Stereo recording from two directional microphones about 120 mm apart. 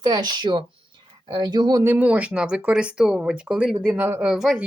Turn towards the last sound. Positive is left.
turn(degrees=0)  # may be behind; listen again after turning